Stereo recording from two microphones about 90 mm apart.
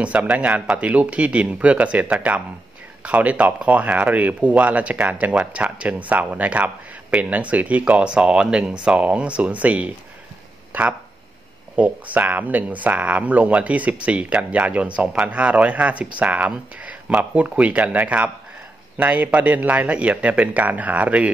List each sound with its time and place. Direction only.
0.0 s speech: 15° right (ahead or behind)